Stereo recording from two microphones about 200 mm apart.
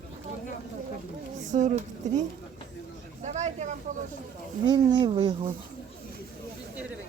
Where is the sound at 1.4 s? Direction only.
40° right (ahead or behind).